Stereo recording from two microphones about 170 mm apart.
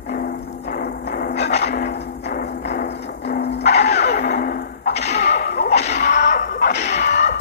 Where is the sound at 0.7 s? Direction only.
60° left (ahead or behind); by 5.1 s 75° left (ahead or behind).